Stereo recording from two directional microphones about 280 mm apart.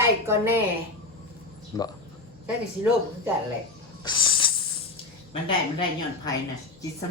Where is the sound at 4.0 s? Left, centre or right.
Centre.